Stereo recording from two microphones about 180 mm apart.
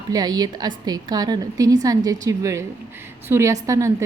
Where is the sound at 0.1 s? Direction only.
20° right (ahead or behind).